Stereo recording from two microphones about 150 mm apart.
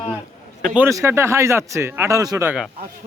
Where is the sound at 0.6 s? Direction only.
5° right (ahead or behind).